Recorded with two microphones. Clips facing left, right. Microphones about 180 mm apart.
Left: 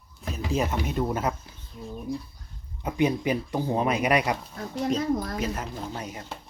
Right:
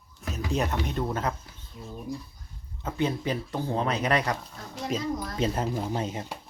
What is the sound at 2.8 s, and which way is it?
Speech, 15° left (ahead or behind).